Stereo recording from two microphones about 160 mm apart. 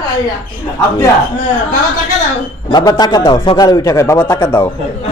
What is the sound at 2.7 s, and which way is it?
Speech, 25° left (ahead or behind).